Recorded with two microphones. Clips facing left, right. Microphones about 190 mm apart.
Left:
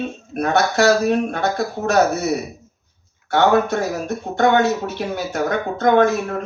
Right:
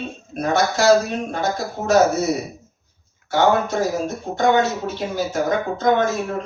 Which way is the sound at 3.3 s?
60° left (ahead or behind).